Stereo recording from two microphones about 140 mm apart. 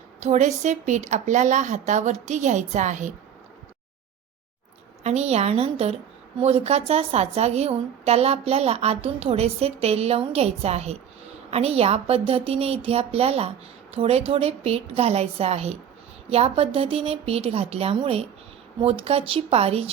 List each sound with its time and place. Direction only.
0.2 s a woman's voice: 55° right (ahead or behind)
5.0 s a woman's voice: 50° right (ahead or behind)